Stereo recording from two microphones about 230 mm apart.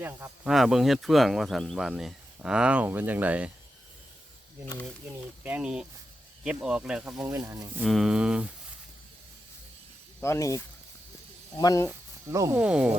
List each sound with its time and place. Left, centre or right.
0.0 s speech: centre
4.6 s speech: centre
5.0 s speech: centre
7.9 s speech: centre
10.2 s speech: centre
11.9 s speech: centre